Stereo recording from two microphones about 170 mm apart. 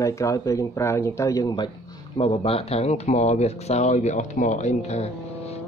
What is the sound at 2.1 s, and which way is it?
Speech, 35° left (ahead or behind).